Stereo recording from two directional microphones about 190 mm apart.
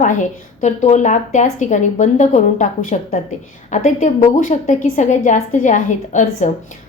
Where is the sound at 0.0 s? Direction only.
40° left (ahead or behind).